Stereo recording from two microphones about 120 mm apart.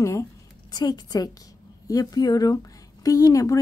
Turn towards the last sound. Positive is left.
turn(degrees=25)  # may be behind; listen again after turning